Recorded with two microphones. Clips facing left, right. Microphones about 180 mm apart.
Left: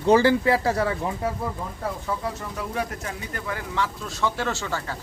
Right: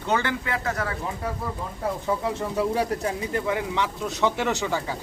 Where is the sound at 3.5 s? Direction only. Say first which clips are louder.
Left 2 dB; 20° right (ahead or behind).